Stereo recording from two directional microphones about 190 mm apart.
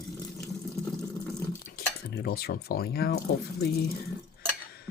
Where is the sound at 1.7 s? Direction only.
50° left (ahead or behind).